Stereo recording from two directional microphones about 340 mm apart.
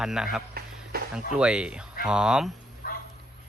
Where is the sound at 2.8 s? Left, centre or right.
Left.